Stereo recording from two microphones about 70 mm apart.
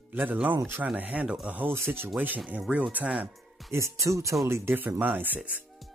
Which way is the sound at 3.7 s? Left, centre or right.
Right.